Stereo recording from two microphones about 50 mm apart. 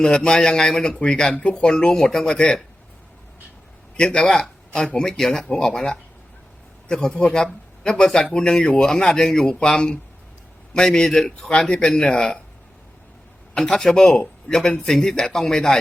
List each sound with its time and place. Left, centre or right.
0.0 s speech: centre
1.3 s speech: left
3.9 s a man's voice: centre
13.6 s speech: centre